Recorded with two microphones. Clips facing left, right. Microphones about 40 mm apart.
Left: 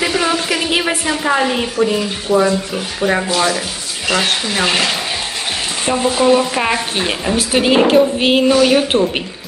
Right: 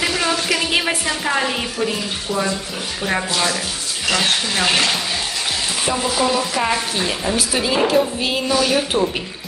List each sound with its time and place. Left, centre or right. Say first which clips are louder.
0.0 s a woman's voice: left 3 dB; centre
6.2 s speech: left 7 dB; left
7.3 s speech: left 8 dB; left
8.9 s a woman's voice: left 4 dB; right